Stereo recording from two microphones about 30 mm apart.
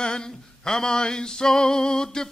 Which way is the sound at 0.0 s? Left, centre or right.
Left.